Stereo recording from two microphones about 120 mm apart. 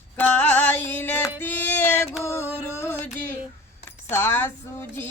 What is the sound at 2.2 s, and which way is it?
Music, 25° left (ahead or behind).